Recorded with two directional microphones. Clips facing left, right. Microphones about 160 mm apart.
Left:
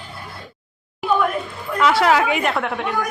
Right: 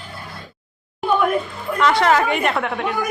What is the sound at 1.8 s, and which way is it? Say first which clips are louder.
A woman's voice: even; 5° left (ahead or behind).